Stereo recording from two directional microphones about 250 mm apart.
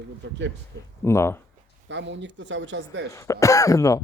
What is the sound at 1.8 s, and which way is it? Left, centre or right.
Speech, right.